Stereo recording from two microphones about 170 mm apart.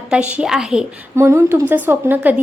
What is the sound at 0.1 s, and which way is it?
Speech, 5° right (ahead or behind).